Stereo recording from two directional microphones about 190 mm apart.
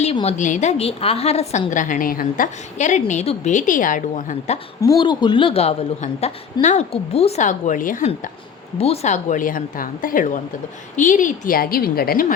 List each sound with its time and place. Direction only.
0.0 s a woman's voice: 30° left (ahead or behind)
4.8 s a woman's voice: 20° left (ahead or behind); by 8.3 s 45° left (ahead or behind)
8.8 s a woman's voice: 30° left (ahead or behind); by 12.3 s 50° left (ahead or behind)